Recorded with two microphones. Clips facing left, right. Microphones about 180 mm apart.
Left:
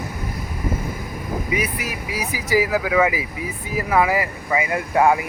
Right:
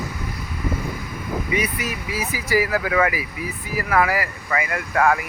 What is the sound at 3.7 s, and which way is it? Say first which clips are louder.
Speech: left 2 dB; 20° left (ahead or behind).